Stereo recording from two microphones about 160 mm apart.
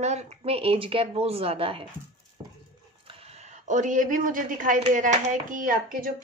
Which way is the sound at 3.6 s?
50° right (ahead or behind).